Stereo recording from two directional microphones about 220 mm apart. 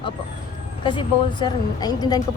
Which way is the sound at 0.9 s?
20° left (ahead or behind).